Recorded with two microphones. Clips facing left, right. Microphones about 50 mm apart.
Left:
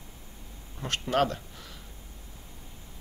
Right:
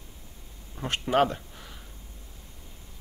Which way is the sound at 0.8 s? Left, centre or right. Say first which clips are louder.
Right 3 dB; centre.